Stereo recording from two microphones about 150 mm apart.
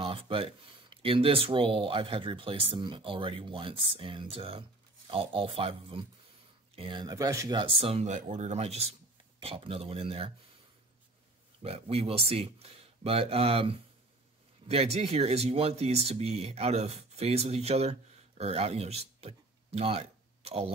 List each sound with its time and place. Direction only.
0.0 s speech: 35° right (ahead or behind)
7.5 s speech: 40° right (ahead or behind)
11.6 s speech: 40° right (ahead or behind)